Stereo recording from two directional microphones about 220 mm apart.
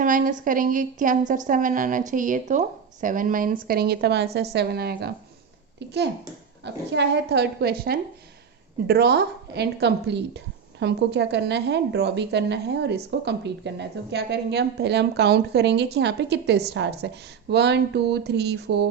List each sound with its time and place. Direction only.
0.0 s a woman's voice: 40° right (ahead or behind)